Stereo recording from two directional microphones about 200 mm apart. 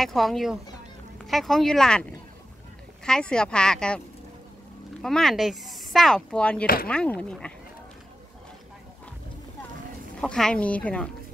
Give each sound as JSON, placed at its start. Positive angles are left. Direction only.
{"t": 0.0, "sound": "speech", "side_deg": 0}
{"t": 3.1, "sound": "speech", "side_deg": 5}
{"t": 5.0, "sound": "speech", "side_deg": 0}
{"t": 6.6, "sound": "speech", "side_deg": 45}
{"t": 6.9, "sound": "speech", "side_deg": 5}
{"t": 10.2, "sound": "speech", "side_deg": 5}